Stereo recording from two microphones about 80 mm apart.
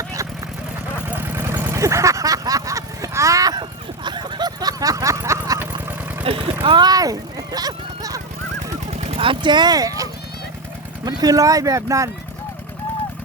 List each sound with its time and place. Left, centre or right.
1.0 s vehicle: right
3.6 s a sound: right
6.5 s vehicle: right
9.2 s speech: right